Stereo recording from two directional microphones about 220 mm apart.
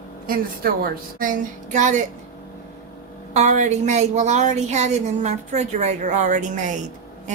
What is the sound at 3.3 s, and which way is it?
A woman's voice, 30° right (ahead or behind).